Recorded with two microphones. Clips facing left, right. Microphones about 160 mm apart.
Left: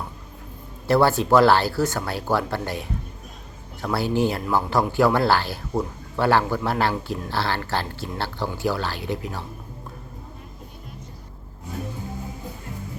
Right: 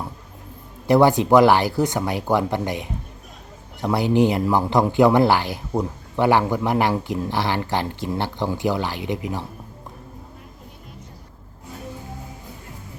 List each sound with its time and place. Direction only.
0.9 s speech: 15° right (ahead or behind)